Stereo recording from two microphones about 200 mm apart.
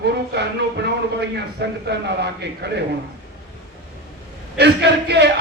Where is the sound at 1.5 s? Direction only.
55° right (ahead or behind).